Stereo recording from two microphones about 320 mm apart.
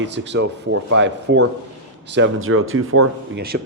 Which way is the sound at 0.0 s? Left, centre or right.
Right.